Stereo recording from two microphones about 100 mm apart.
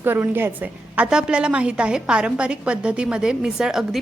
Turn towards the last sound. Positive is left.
turn(degrees=-5)  # may be behind; listen again after turning